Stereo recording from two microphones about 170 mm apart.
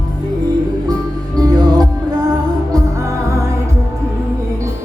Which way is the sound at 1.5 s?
20° right (ahead or behind).